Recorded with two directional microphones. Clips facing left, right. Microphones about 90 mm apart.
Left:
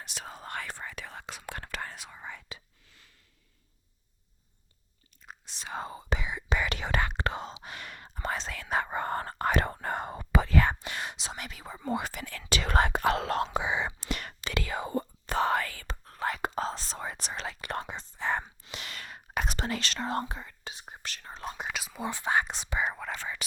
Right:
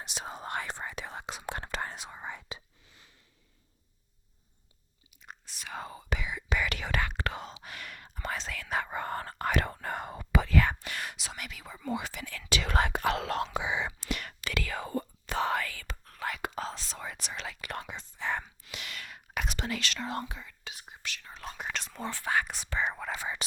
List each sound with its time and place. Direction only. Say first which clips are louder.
0.0 s whispering: right 3 dB; 20° right (ahead or behind)
5.1 s whispering: even; 5° right (ahead or behind)
5.5 s whispering: left 3 dB; 30° left (ahead or behind)
11.9 s whispering: left 3 dB; 45° left (ahead or behind); by 15.0 s 20° left (ahead or behind)
15.3 s whispering: left 3 dB; 40° left (ahead or behind)
21.4 s whispering: left 3 dB; 25° left (ahead or behind)
21.7 s whispering: even; 5° left (ahead or behind)
22.1 s speech: left 2 dB; 20° left (ahead or behind)
22.8 s speech: even; centre (ahead or behind)
23.1 s speech: right 1 dB; 15° right (ahead or behind)